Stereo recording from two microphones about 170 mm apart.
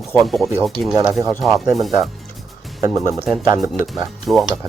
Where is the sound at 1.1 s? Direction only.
20° right (ahead or behind).